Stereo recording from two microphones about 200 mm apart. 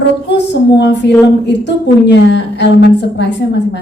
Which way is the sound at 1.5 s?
60° left (ahead or behind).